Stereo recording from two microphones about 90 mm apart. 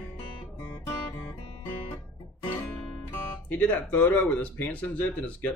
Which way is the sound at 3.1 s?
25° left (ahead or behind).